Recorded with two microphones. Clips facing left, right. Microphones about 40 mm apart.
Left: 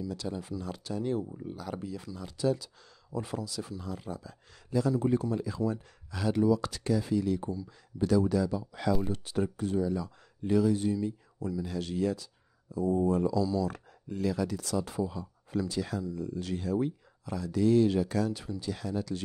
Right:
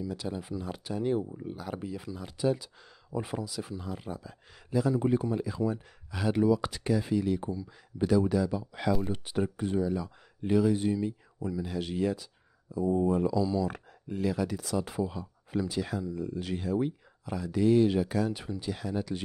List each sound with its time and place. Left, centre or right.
0.0 s speech: centre